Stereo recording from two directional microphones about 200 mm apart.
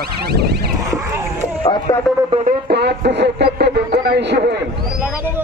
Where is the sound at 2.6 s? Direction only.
55° right (ahead or behind).